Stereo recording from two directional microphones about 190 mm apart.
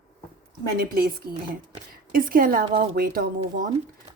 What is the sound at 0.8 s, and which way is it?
Speech, 50° right (ahead or behind).